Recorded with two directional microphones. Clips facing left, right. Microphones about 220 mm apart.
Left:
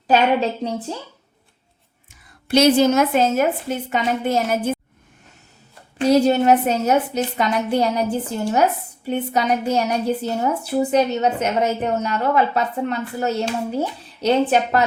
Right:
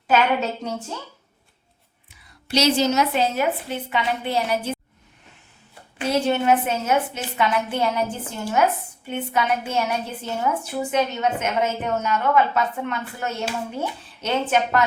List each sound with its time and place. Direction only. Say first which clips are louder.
0.1 s a child's voice: left 3 dB; 35° left (ahead or behind)
2.0 s a woman's voice: left 6 dB; 55° left (ahead or behind)
6.1 s a child's voice: left 5 dB; 40° left (ahead or behind)
9.0 s a child's voice: left 4 dB; 40° left (ahead or behind)